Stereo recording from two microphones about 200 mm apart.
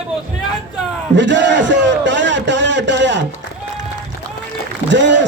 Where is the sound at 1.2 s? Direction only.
65° right (ahead or behind).